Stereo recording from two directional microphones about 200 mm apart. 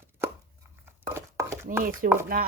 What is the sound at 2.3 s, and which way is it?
Chopping, 45° right (ahead or behind).